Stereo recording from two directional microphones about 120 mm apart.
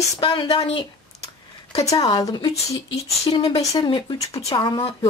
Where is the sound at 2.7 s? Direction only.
50° left (ahead or behind); by 4.8 s 35° left (ahead or behind).